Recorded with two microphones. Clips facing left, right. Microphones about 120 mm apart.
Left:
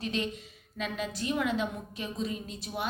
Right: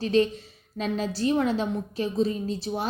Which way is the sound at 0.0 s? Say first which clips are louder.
Right 11 dB; 35° right (ahead or behind).